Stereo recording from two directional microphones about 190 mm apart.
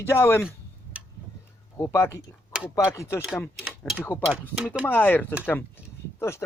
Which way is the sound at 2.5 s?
5° right (ahead or behind).